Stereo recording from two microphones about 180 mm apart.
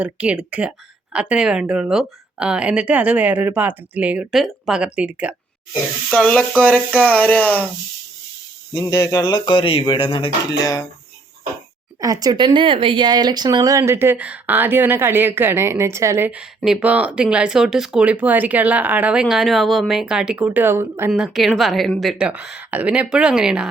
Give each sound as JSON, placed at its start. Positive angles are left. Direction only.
{"t": 0.0, "sound": "speech", "side_deg": -5}
{"t": 6.1, "sound": "speech", "side_deg": 5}
{"t": 8.7, "sound": "speech", "side_deg": 20}
{"t": 11.9, "sound": "speech", "side_deg": -20}
{"t": 21.1, "sound": "speech", "side_deg": 0}